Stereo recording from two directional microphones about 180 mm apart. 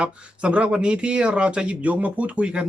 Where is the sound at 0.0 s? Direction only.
5° right (ahead or behind).